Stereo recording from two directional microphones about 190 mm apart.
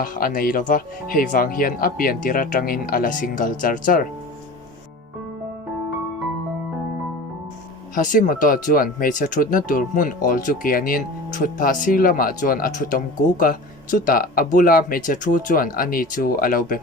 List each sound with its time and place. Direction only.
0.0 s speech: 50° left (ahead or behind)
7.9 s speech: 45° left (ahead or behind)